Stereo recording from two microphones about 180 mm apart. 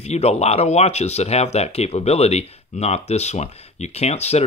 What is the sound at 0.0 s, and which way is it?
Speech, 35° left (ahead or behind).